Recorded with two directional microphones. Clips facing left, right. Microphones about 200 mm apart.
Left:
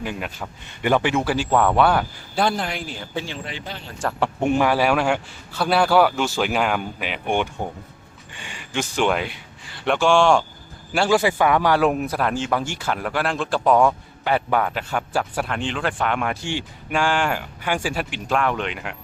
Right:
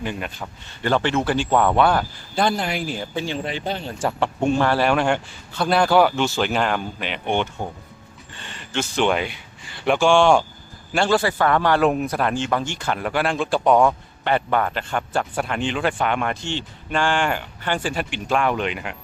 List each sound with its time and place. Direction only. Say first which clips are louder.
0.0 s speech: even; 5° left (ahead or behind)
3.4 s speech: right 7 dB; 25° right (ahead or behind)
4.0 s speech: right 2 dB; 5° right (ahead or behind)
4.4 s a man's voice: even; 15° left (ahead or behind)
10.9 s speech: left 1 dB; 10° left (ahead or behind)